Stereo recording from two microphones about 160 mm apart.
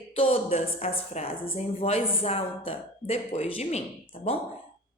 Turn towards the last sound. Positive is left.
turn(degrees=45)  # may be behind; listen again after turning